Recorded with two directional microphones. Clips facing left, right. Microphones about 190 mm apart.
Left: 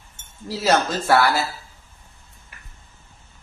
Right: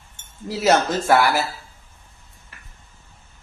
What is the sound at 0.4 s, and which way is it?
Speech, 20° right (ahead or behind).